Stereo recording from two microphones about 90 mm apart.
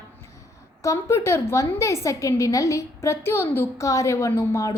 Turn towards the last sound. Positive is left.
turn(degrees=35)  # may be behind; listen again after turning